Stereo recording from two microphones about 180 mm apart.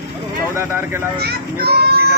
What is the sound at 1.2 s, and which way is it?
Speech, 65° right (ahead or behind).